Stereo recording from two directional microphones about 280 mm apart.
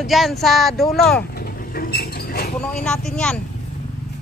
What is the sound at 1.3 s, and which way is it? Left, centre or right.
Vehicle, left.